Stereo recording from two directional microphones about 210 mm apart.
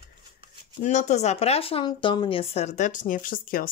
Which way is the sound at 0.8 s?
35° left (ahead or behind).